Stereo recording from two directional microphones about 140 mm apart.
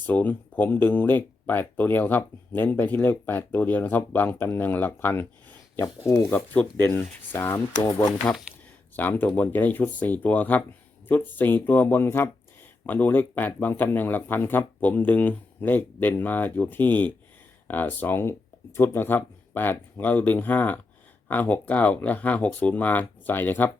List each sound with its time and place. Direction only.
0.0 s speech: 10° left (ahead or behind)
9.0 s speech: 10° left (ahead or behind)